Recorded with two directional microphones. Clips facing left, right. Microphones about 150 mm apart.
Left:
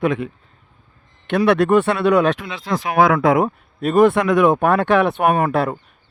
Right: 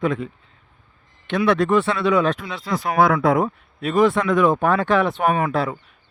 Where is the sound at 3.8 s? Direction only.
50° left (ahead or behind).